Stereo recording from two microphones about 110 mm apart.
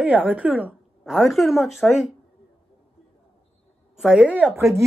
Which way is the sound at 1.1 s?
Centre (ahead or behind).